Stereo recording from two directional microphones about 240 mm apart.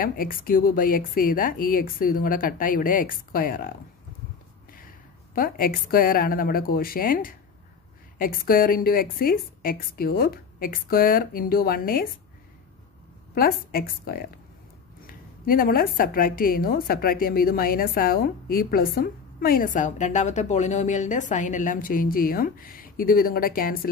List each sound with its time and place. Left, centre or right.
0.0 s a woman's voice: left
5.3 s a woman's voice: left
13.3 s a woman's voice: left